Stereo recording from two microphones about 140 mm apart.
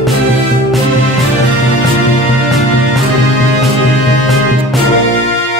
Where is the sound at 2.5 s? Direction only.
Centre (ahead or behind).